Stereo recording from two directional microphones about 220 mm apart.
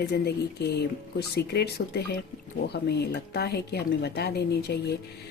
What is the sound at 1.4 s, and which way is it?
A woman's voice, 50° left (ahead or behind).